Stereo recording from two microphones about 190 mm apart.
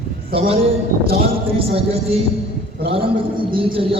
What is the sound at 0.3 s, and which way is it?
Speech, 50° right (ahead or behind).